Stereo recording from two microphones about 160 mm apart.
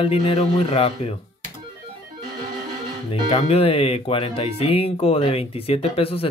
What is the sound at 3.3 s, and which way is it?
Speech, 35° left (ahead or behind).